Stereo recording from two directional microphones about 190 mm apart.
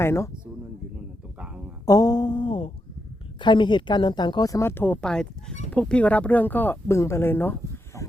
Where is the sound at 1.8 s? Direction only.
20° left (ahead or behind).